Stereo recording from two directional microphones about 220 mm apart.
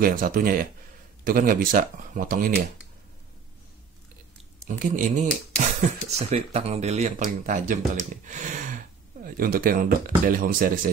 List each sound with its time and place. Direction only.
0.0 s speech: 40° right (ahead or behind)
4.6 s speech: 35° right (ahead or behind)